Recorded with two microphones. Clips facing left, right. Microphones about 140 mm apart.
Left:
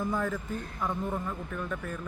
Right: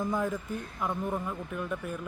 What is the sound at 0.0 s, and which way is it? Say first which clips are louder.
Speech: right 1 dB; 15° right (ahead or behind).